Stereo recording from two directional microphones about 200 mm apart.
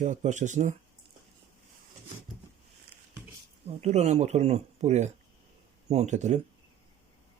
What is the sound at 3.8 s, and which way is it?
Speech, 35° right (ahead or behind).